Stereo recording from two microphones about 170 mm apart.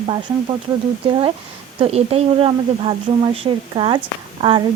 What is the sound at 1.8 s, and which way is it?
Speech, 35° right (ahead or behind).